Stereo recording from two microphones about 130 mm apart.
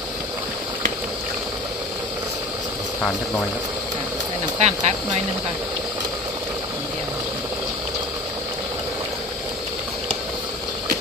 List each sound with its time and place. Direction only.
4.6 s speech: 60° right (ahead or behind)